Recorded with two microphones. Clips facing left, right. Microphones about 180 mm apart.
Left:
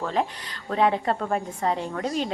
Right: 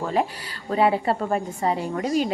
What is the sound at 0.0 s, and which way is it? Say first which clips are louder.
Speech: right 2 dB; 10° right (ahead or behind).